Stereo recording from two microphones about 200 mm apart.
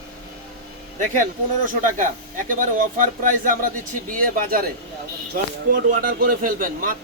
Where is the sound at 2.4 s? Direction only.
40° right (ahead or behind).